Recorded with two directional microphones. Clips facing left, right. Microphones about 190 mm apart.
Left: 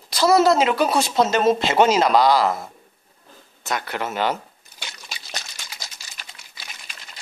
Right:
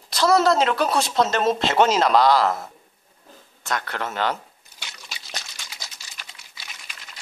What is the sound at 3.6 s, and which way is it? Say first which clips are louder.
Speech: left 2 dB; 10° left (ahead or behind).